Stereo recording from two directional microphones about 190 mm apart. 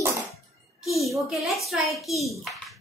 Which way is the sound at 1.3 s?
Centre (ahead or behind).